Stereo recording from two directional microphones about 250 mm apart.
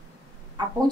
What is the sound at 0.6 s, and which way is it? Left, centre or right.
Speech, centre.